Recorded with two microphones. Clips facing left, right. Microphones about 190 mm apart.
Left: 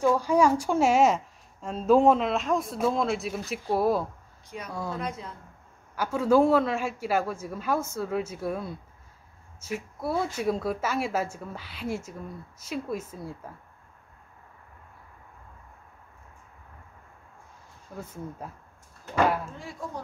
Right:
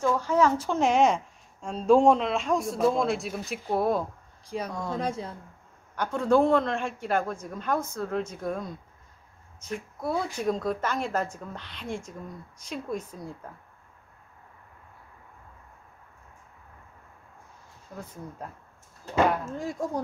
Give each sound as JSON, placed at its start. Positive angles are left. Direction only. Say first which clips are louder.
{"t": 0.0, "sound": "a woman's voice", "louder": "left 2 dB", "side_deg": 10}
{"t": 4.9, "sound": "speech", "louder": "right 4 dB", "side_deg": -30}
{"t": 5.9, "sound": "speech", "louder": "left 1 dB", "side_deg": 5}
{"t": 17.9, "sound": "a woman's voice", "louder": "left 2 dB", "side_deg": 5}
{"t": 19.4, "sound": "speech", "louder": "right 7 dB", "side_deg": -45}